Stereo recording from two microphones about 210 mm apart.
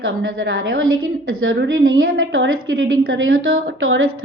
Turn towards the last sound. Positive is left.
turn(degrees=-70)  # may be behind; listen again after turning